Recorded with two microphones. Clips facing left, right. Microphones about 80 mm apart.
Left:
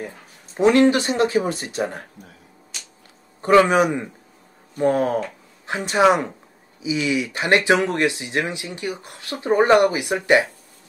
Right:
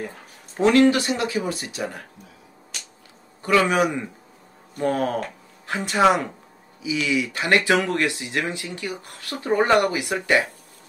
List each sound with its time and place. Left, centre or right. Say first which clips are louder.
0.6 s speech: left 1 dB; left
3.4 s speech: left 4 dB; left